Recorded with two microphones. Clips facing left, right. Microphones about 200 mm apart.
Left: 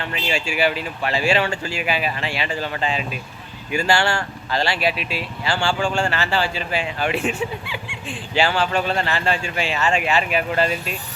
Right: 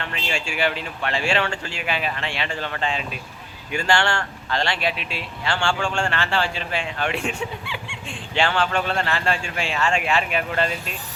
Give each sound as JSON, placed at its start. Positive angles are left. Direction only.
{"t": 0.0, "sound": "speech", "side_deg": 5}